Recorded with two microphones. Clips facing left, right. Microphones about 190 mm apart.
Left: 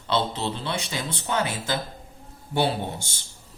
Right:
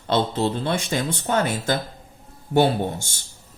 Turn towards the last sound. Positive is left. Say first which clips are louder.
# right 5 dB
turn(degrees=-45)  # may be behind; listen again after turning